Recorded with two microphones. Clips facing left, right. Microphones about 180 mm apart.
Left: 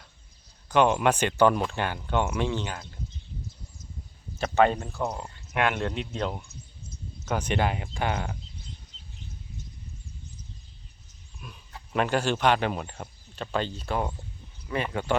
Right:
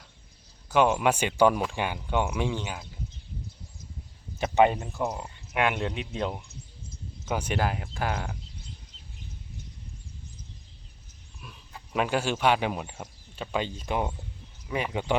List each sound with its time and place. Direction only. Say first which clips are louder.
0.7 s speech: left 1 dB; 5° right (ahead or behind)
4.4 s speech: right 1 dB; 15° right (ahead or behind)
11.3 s speech: left 1 dB; centre (ahead or behind)